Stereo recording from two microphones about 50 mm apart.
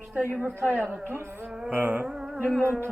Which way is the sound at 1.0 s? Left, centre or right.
Right.